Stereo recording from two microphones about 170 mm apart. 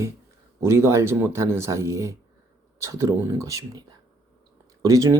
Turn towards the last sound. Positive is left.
turn(degrees=-20)  # may be behind; listen again after turning